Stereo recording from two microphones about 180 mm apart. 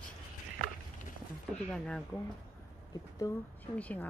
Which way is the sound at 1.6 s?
5° left (ahead or behind).